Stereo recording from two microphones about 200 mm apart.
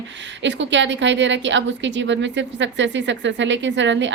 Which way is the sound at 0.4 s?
65° right (ahead or behind).